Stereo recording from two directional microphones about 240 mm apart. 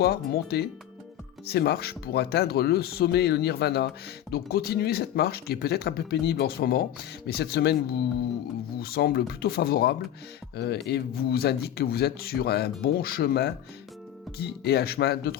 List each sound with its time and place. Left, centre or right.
0.0 s speech: left